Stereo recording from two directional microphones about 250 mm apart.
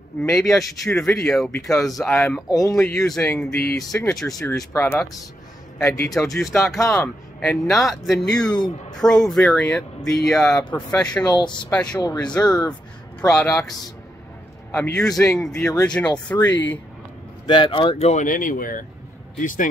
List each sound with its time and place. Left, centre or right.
0.2 s a man's voice: centre
6.0 s speech: centre
14.7 s speech: centre
17.5 s a man's voice: centre